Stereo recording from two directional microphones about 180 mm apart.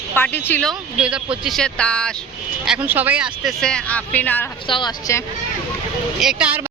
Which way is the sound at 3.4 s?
5° left (ahead or behind).